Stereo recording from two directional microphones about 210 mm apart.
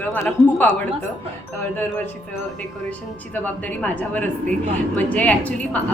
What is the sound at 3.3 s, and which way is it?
A woman's voice, 10° left (ahead or behind).